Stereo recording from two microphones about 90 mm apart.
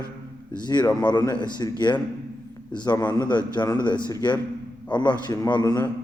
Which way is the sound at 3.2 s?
55° left (ahead or behind).